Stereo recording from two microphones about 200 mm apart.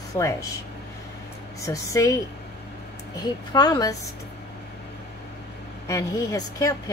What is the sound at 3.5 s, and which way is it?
Speech, 20° left (ahead or behind).